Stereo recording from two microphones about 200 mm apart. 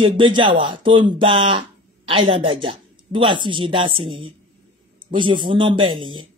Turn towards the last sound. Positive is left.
turn(degrees=-25)  # may be behind; listen again after turning